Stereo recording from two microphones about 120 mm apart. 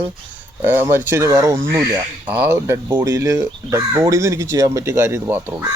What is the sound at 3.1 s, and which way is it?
Speech, 25° right (ahead or behind).